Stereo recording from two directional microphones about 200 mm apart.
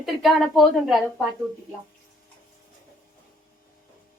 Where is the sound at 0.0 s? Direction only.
Centre (ahead or behind).